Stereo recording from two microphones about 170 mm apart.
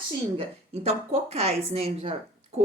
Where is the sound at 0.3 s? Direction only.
40° right (ahead or behind).